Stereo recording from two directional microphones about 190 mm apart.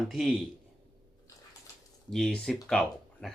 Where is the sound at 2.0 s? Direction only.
Centre (ahead or behind).